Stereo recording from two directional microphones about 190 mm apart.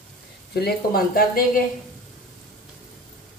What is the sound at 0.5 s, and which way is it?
Speech, 55° left (ahead or behind).